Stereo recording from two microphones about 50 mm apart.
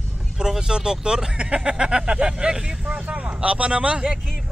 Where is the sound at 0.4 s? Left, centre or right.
Centre.